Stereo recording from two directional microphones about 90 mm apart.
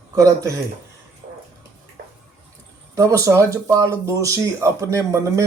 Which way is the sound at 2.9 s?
35° right (ahead or behind).